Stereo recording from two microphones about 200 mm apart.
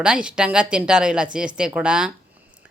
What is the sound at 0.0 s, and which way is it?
A woman's voice, 5° right (ahead or behind).